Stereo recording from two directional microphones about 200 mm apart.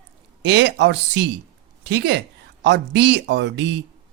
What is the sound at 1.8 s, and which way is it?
Speech, 60° right (ahead or behind).